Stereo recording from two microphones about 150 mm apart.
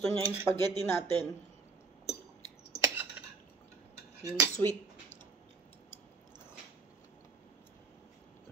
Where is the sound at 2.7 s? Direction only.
20° right (ahead or behind).